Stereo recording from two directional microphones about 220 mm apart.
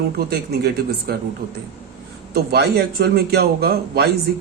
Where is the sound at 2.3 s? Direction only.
45° right (ahead or behind).